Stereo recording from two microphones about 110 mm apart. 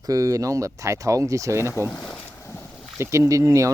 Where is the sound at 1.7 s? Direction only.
25° left (ahead or behind).